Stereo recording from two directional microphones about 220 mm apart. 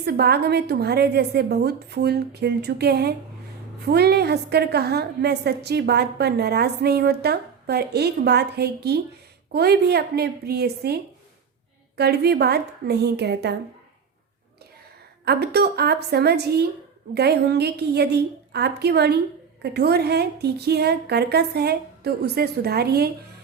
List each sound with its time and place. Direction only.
0.0 s a woman's voice: 45° right (ahead or behind)
15.2 s a woman's voice: 45° right (ahead or behind)